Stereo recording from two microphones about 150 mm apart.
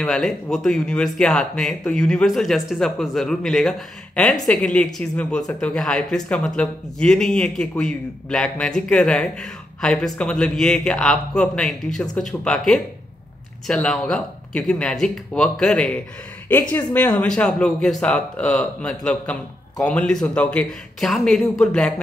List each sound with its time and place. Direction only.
0.0 s speech: centre (ahead or behind)